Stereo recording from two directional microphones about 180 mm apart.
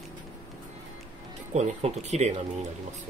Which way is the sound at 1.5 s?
40° right (ahead or behind).